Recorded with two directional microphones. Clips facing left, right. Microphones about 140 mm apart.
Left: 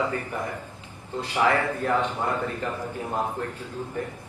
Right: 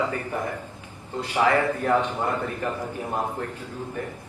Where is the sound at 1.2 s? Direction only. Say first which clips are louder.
Right 2 dB; 15° right (ahead or behind).